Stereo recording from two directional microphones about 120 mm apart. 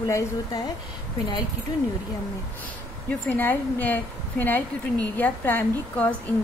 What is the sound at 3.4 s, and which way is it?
A woman's voice, 15° left (ahead or behind).